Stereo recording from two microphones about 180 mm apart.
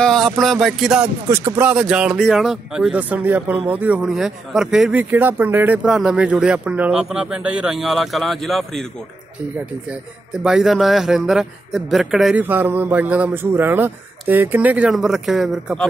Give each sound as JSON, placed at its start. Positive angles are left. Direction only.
{"t": 0.0, "sound": "a man's voice", "side_deg": 0}
{"t": 9.8, "sound": "a man's voice", "side_deg": -5}